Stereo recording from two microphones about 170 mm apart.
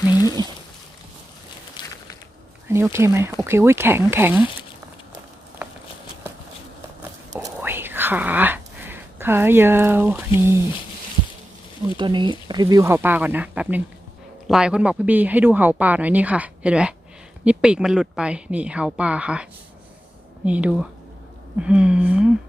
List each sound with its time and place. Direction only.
0.1 s a sound: 20° left (ahead or behind)
2.6 s speech: 15° right (ahead or behind)
7.3 s whispering: 15° right (ahead or behind)
11.9 s speech: 25° right (ahead or behind); by 22.3 s 5° right (ahead or behind)